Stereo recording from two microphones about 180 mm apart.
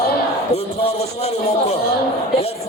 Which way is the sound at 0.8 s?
35° left (ahead or behind).